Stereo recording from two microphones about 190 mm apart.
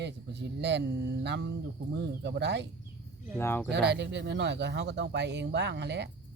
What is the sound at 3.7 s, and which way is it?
Speech, 60° right (ahead or behind).